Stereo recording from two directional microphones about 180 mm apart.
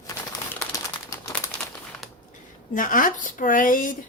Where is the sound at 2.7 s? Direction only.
50° left (ahead or behind).